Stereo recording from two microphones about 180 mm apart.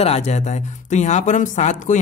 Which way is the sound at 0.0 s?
35° left (ahead or behind).